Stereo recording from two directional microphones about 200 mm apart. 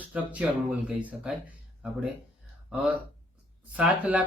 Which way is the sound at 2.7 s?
5° right (ahead or behind).